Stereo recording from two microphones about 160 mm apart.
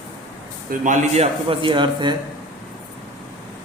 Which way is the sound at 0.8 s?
50° right (ahead or behind).